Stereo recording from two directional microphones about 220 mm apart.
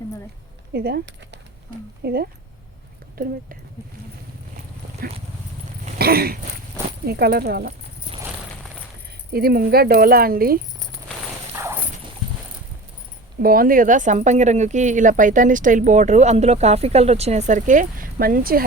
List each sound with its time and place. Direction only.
0.7 s speech: 45° right (ahead or behind)
5.8 s a sound: 45° right (ahead or behind)
7.0 s speech: 45° right (ahead or behind)
9.3 s speech: 45° right (ahead or behind)
11.5 s a sound: 10° right (ahead or behind)
13.4 s speech: 40° right (ahead or behind)